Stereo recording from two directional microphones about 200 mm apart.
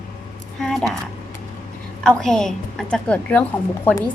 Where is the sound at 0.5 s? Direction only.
Centre (ahead or behind).